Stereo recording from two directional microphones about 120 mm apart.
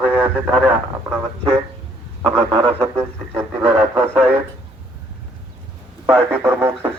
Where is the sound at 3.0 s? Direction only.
20° right (ahead or behind).